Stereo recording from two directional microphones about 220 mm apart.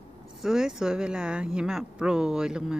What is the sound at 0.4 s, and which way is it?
Speech, 5° right (ahead or behind).